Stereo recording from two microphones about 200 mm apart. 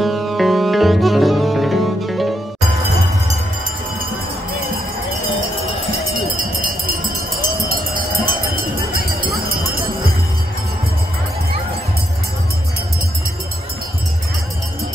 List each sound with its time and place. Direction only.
0.0 s music: centre (ahead or behind)
6.3 s a sound: 45° right (ahead or behind)
8.9 s run: 45° right (ahead or behind)